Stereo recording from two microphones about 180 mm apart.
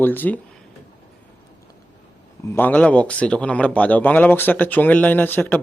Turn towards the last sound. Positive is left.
turn(degrees=10)  # may be behind; listen again after turning